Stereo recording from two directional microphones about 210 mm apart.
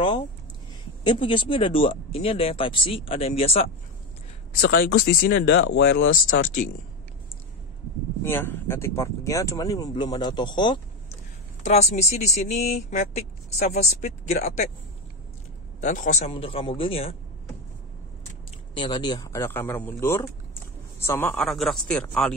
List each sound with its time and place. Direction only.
1.0 s speech: 25° left (ahead or behind)
4.6 s speech: 60° left (ahead or behind)
8.2 s speech: 10° left (ahead or behind)
11.6 s speech: 30° left (ahead or behind)
15.8 s speech: 35° left (ahead or behind)
18.8 s speech: 20° left (ahead or behind); by 22.3 s 5° left (ahead or behind)